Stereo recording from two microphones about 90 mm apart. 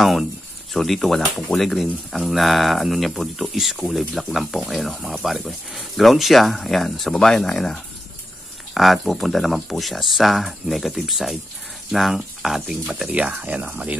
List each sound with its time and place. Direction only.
0.7 s speech: centre (ahead or behind); by 13.9 s 15° right (ahead or behind)